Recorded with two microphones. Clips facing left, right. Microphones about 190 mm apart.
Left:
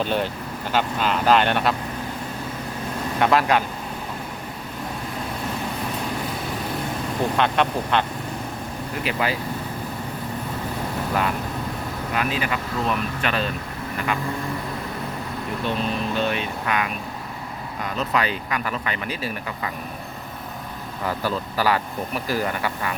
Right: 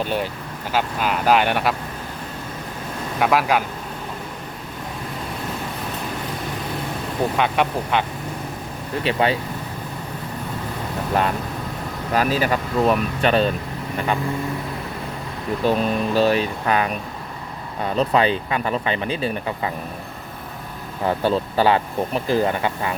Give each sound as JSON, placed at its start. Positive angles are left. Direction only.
{"t": 0.0, "sound": "speech", "side_deg": -10}
{"t": 3.2, "sound": "speech", "side_deg": -5}
{"t": 7.3, "sound": "speech", "side_deg": -10}
{"t": 9.0, "sound": "speech", "side_deg": -30}
{"t": 12.1, "sound": "speech", "side_deg": -40}
{"t": 15.6, "sound": "speech", "side_deg": -40}
{"t": 21.0, "sound": "speech", "side_deg": -25}